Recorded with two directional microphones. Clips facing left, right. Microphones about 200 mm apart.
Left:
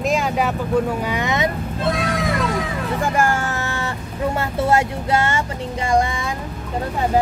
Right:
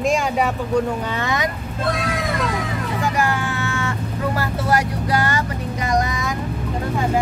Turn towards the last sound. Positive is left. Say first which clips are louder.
# left 2 dB
turn(degrees=30)  # may be behind; listen again after turning